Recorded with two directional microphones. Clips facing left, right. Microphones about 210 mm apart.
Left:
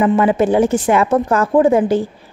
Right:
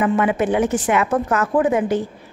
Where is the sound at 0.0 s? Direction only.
30° left (ahead or behind).